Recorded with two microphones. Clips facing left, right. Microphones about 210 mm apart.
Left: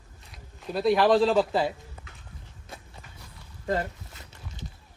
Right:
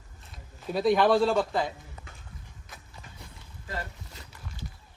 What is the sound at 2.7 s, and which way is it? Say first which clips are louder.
Walk: left 7 dB; 30° left (ahead or behind).